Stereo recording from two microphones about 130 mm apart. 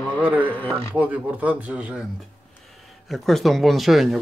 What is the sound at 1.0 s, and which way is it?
Speech, 10° right (ahead or behind).